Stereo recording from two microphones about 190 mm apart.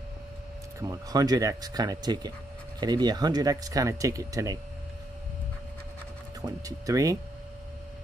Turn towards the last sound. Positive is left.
turn(degrees=-15)  # may be behind; listen again after turning